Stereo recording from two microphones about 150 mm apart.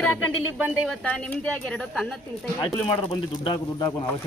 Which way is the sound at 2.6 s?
35° left (ahead or behind).